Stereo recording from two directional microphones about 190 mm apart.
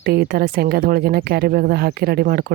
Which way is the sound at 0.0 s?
55° right (ahead or behind).